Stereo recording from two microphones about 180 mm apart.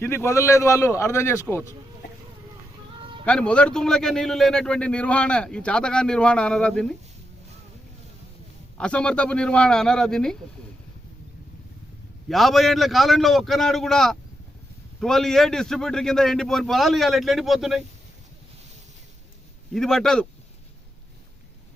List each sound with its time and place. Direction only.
0.0 s a man's voice: 15° left (ahead or behind)
3.0 s a sound: 30° right (ahead or behind)
3.2 s a man's voice: 5° left (ahead or behind)
8.8 s a man's voice: 5° left (ahead or behind)
12.3 s a man's voice: centre (ahead or behind)
19.7 s a man's voice: centre (ahead or behind)